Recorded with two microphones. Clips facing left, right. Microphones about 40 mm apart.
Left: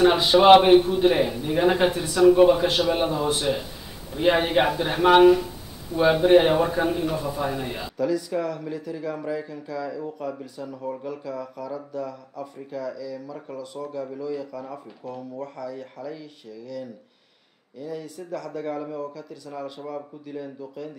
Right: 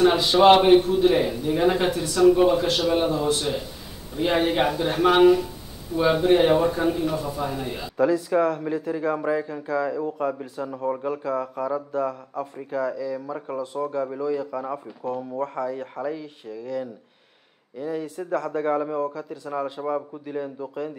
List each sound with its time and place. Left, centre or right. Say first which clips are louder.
0.0 s a man's voice: even; centre
8.0 s speech: right 5 dB; right